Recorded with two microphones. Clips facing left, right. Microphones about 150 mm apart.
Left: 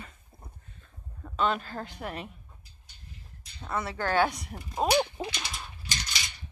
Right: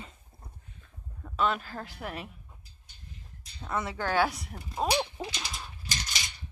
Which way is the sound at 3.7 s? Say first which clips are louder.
Left 1 dB; 15° right (ahead or behind).